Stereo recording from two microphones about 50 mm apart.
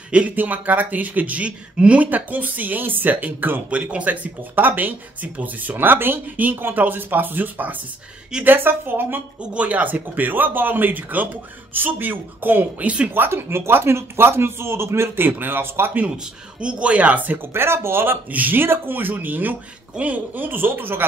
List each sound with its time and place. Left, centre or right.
0.4 s speech: right
3.7 s a woman's voice: right
9.4 s speech: right
12.8 s speech: right
13.1 s a man's voice: right
15.1 s a woman's voice: right
16.6 s speech: right
17.6 s a man's voice: right
18.3 s speech: right